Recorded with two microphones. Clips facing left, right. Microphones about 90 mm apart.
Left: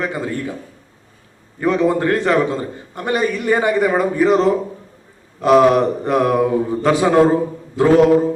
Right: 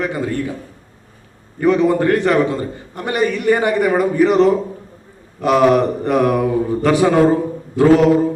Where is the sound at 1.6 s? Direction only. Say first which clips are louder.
Right 2 dB; 20° left (ahead or behind).